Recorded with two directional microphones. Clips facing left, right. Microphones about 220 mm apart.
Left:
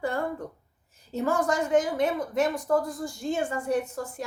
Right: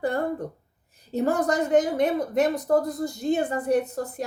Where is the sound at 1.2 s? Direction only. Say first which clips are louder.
Right 3 dB; 35° right (ahead or behind).